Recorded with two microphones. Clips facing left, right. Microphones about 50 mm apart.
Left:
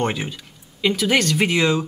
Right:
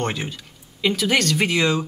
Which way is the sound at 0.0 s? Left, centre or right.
Centre.